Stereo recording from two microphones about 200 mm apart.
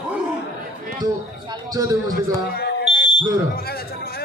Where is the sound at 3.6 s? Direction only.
50° left (ahead or behind).